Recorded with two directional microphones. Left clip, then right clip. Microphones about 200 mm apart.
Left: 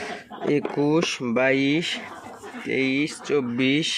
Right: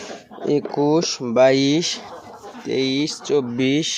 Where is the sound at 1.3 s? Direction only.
15° right (ahead or behind).